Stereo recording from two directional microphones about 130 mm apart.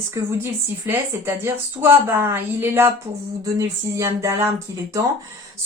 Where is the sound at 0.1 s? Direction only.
20° right (ahead or behind).